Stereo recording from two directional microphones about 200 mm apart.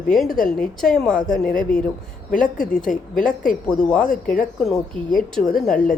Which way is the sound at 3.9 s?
5° left (ahead or behind).